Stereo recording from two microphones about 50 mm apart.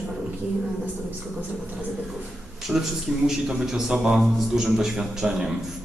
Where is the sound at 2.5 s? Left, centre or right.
Centre.